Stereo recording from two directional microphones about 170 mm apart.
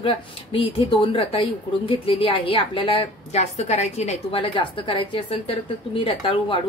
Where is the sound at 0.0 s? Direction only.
30° left (ahead or behind).